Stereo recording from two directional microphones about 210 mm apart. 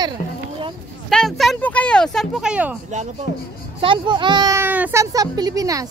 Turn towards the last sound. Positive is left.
turn(degrees=-15)  # may be behind; listen again after turning